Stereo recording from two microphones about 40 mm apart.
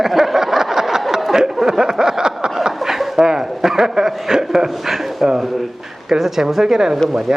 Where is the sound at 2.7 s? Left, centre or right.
Centre.